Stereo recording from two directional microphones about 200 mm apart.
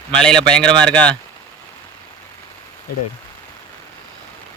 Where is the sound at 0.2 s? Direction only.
5° left (ahead or behind).